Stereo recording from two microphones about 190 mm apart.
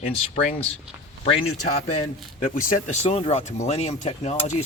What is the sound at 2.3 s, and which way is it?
Speech, 45° left (ahead or behind).